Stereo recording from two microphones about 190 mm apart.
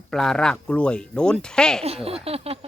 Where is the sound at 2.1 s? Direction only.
30° right (ahead or behind).